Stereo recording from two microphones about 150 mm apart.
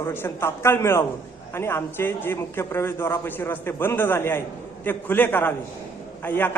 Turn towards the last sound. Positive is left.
turn(degrees=15)  # may be behind; listen again after turning